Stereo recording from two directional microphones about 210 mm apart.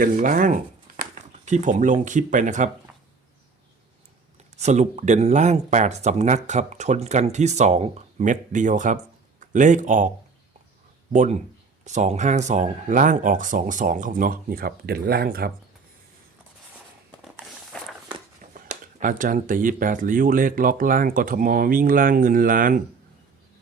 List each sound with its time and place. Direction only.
0.0 s speech: 40° right (ahead or behind)
2.9 s a sound: 5° right (ahead or behind)
4.5 s speech: 35° right (ahead or behind)
11.1 s speech: 35° right (ahead or behind)
17.7 s walk: 5° left (ahead or behind)
18.5 s speech: 35° right (ahead or behind)